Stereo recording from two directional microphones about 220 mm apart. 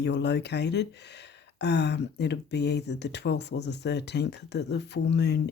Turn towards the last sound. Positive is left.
turn(degrees=50)  # may be behind; listen again after turning